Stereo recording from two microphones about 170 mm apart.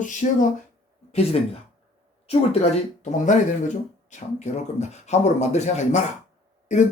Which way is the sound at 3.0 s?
45° left (ahead or behind).